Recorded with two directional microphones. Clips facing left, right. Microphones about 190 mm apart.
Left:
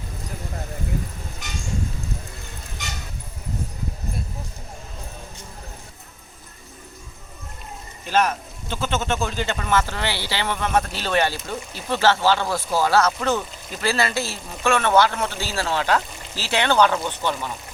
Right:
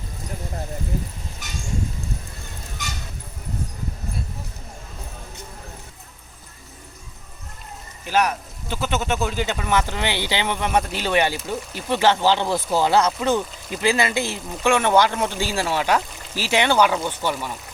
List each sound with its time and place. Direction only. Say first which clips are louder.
8.0 s speech: even; 10° right (ahead or behind)